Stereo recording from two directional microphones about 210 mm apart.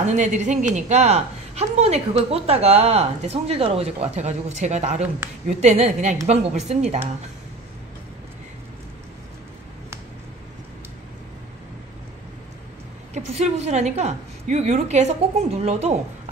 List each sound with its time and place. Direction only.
0.0 s a woman's voice: 35° right (ahead or behind)
13.1 s a woman's voice: 30° right (ahead or behind)